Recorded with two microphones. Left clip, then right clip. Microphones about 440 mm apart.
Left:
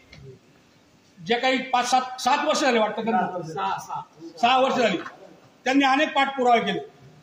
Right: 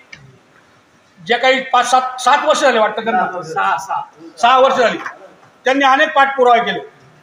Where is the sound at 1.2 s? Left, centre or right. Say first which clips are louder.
Right 9 dB; left.